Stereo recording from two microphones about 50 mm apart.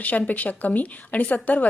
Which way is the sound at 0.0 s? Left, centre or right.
Left.